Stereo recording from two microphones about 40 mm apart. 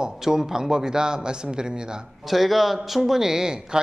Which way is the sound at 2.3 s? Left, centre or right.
Centre.